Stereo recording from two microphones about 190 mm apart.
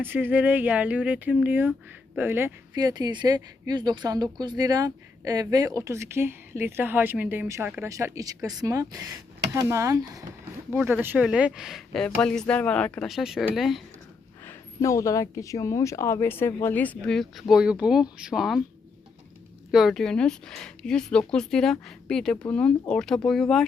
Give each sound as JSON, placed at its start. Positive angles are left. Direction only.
{"t": 0.0, "sound": "speech", "side_deg": -10}
{"t": 14.4, "sound": "speech", "side_deg": 15}
{"t": 19.7, "sound": "speech", "side_deg": 0}